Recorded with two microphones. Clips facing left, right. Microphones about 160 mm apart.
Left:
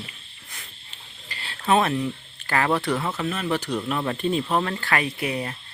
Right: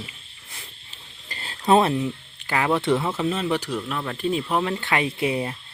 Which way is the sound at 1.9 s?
15° right (ahead or behind).